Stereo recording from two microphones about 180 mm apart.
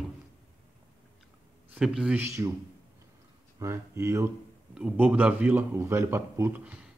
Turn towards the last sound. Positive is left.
turn(degrees=-10)  # may be behind; listen again after turning